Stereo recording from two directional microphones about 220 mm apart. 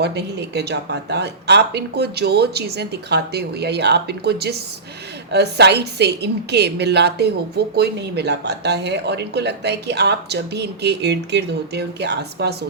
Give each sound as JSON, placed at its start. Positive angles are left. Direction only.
{"t": 0.0, "sound": "a woman's voice", "side_deg": -50}